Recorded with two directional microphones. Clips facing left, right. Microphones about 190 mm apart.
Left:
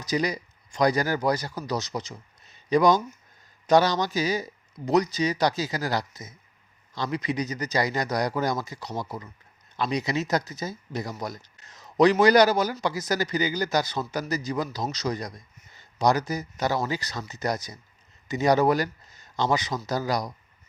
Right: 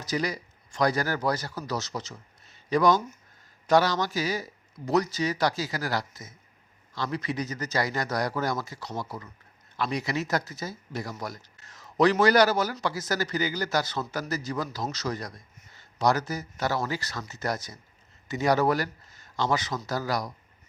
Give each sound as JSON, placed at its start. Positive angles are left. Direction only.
{"t": 0.0, "sound": "a man's voice", "side_deg": 15}